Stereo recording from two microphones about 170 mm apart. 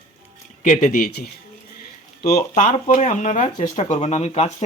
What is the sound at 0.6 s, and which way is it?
Speech, 50° left (ahead or behind).